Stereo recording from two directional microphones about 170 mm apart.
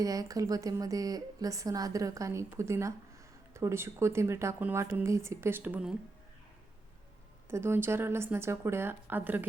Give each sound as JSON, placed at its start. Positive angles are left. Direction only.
{"t": 0.0, "sound": "a woman's voice", "side_deg": -20}
{"t": 7.5, "sound": "speech", "side_deg": -15}